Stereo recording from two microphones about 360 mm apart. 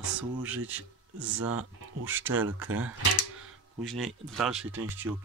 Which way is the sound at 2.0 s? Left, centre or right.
Centre.